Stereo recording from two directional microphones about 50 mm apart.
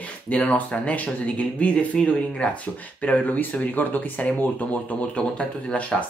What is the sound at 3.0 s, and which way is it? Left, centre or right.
Speech, left.